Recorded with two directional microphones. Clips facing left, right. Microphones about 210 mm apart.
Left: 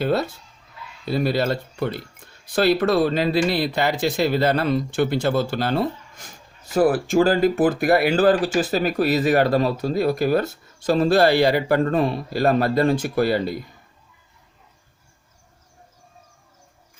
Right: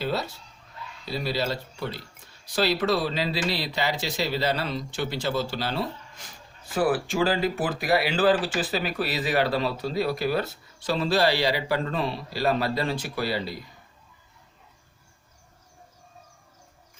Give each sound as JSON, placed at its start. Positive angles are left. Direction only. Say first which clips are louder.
{"t": 0.0, "sound": "speech", "louder": "left 7 dB", "side_deg": 55}
{"t": 6.7, "sound": "speech", "louder": "left 6 dB", "side_deg": 40}